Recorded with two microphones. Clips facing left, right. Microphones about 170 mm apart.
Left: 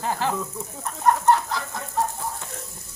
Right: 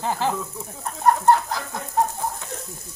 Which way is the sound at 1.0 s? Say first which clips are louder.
Right 2 dB; 35° right (ahead or behind).